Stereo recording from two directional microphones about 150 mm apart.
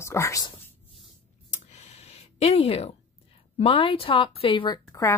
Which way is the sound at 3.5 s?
35° left (ahead or behind).